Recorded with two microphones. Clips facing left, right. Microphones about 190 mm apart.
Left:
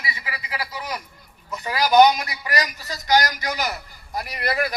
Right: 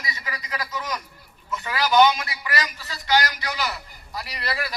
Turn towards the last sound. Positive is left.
turn(degrees=45)  # may be behind; listen again after turning